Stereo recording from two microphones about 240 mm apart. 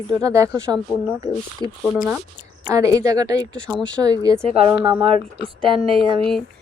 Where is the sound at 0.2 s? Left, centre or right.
Centre.